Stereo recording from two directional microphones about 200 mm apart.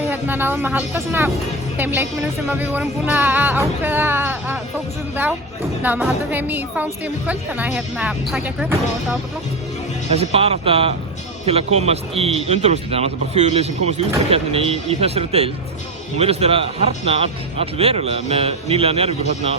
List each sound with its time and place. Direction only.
0.1 s a woman's voice: 10° right (ahead or behind)
5.8 s a woman's voice: 10° right (ahead or behind)
10.2 s a man's voice: 30° right (ahead or behind)